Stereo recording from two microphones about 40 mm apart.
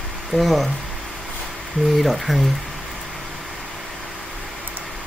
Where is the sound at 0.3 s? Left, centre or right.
Centre.